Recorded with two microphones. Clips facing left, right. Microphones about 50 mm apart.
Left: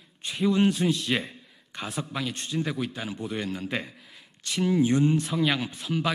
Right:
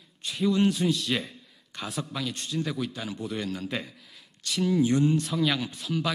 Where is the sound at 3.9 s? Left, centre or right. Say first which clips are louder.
Left 2 dB; centre.